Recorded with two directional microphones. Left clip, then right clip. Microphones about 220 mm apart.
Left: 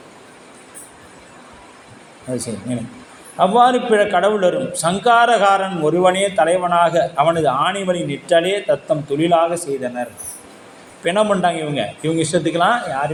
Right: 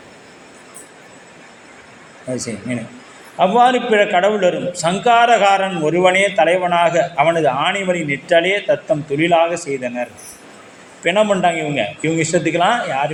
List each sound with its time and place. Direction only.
2.3 s a man's voice: 25° left (ahead or behind)